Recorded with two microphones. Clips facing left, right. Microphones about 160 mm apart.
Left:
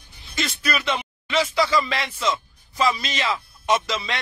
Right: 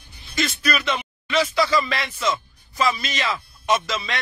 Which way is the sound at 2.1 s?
10° right (ahead or behind).